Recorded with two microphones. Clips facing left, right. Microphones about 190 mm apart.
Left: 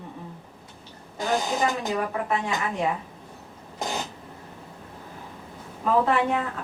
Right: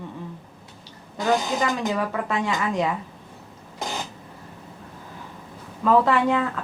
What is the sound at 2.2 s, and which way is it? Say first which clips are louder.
Speech: right 2 dB; 90° right.